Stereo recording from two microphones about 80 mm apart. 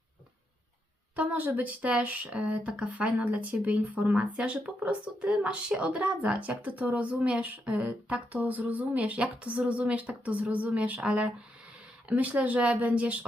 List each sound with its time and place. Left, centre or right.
1.1 s speech: centre